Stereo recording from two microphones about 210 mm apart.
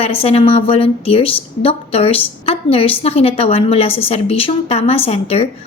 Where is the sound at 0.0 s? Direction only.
30° left (ahead or behind).